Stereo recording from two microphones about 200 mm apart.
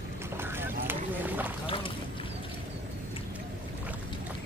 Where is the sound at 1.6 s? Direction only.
25° left (ahead or behind).